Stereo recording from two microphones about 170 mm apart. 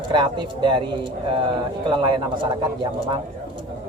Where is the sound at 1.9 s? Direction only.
30° right (ahead or behind).